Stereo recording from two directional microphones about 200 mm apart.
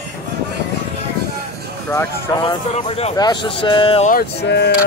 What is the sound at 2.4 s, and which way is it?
Speech, 25° left (ahead or behind).